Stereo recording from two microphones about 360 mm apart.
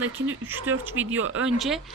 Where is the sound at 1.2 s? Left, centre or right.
Right.